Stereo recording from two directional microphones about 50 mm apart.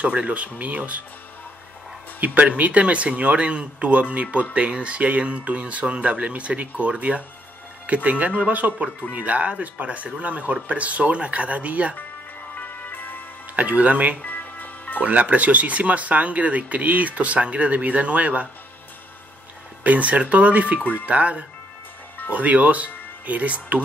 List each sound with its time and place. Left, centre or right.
0.0 s speech: right
2.1 s speech: right
12.5 s music: left
13.6 s speech: right
14.2 s music: left
15.0 s speech: right
19.8 s speech: right